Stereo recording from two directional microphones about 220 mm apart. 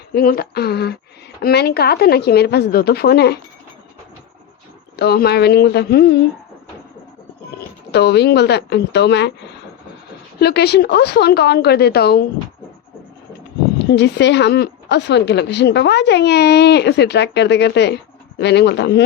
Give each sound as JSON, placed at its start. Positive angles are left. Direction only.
{"t": 0.1, "sound": "speech", "side_deg": 45}
{"t": 4.9, "sound": "speech", "side_deg": 45}
{"t": 7.9, "sound": "speech", "side_deg": 50}
{"t": 10.4, "sound": "speech", "side_deg": 45}
{"t": 13.7, "sound": "speech", "side_deg": 50}